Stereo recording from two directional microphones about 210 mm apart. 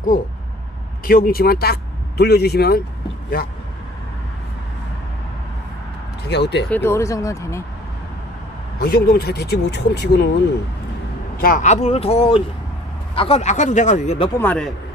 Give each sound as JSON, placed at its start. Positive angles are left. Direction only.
{"t": 1.0, "sound": "speech", "side_deg": 45}
{"t": 6.2, "sound": "speech", "side_deg": 55}
{"t": 6.7, "sound": "speech", "side_deg": 10}
{"t": 8.7, "sound": "speech", "side_deg": 50}
{"t": 11.3, "sound": "a man's voice", "side_deg": 40}
{"t": 14.4, "sound": "speech", "side_deg": 5}